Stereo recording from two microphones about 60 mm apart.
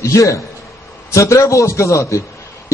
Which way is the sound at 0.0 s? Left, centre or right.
Left.